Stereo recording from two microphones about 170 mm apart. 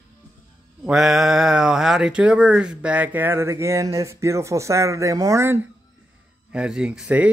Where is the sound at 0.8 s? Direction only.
Centre (ahead or behind).